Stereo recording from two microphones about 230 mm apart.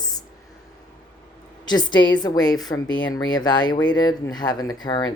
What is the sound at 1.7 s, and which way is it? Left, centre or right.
Speech, centre.